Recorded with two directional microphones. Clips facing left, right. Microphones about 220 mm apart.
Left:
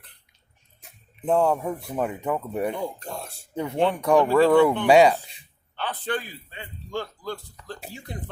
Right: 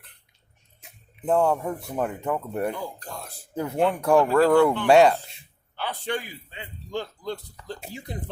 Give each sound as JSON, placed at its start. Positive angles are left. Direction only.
{"t": 1.2, "sound": "speech", "side_deg": -5}
{"t": 2.7, "sound": "speech", "side_deg": 25}
{"t": 3.5, "sound": "speech", "side_deg": -5}
{"t": 5.7, "sound": "a man's voice", "side_deg": -10}